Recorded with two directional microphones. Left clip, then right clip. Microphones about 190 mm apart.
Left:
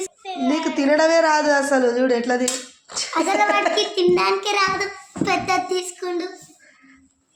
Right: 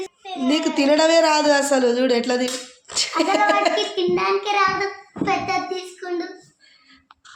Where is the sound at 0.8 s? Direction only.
Centre (ahead or behind).